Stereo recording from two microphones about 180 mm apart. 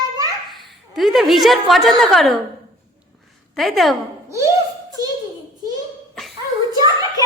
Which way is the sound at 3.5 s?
Centre (ahead or behind).